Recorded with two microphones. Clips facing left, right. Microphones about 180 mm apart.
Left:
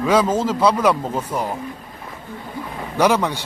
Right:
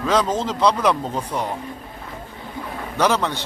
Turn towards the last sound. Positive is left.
turn(degrees=10)  # may be behind; listen again after turning